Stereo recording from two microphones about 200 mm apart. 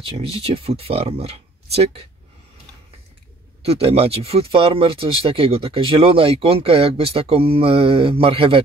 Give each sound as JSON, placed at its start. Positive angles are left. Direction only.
{"t": 0.2, "sound": "speech", "side_deg": -30}
{"t": 3.6, "sound": "speech", "side_deg": -30}